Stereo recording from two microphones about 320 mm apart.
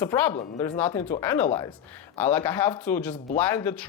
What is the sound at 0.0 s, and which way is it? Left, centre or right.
Speech, centre.